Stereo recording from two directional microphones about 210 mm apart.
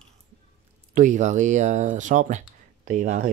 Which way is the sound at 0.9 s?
35° right (ahead or behind).